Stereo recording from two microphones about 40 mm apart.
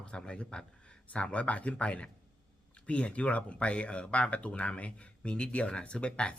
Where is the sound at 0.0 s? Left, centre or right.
Left.